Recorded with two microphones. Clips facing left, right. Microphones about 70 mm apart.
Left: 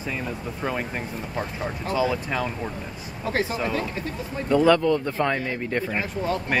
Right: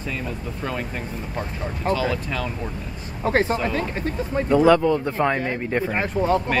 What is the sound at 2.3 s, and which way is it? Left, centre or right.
Speech, centre.